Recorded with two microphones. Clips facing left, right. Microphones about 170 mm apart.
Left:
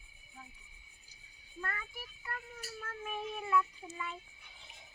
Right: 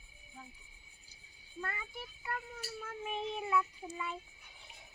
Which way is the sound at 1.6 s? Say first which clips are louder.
Right 1 dB; 20° right (ahead or behind).